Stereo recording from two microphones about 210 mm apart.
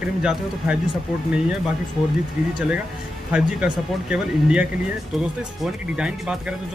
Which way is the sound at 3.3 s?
5° right (ahead or behind).